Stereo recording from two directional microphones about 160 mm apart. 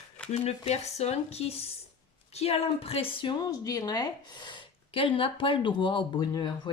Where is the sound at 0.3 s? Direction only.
40° left (ahead or behind).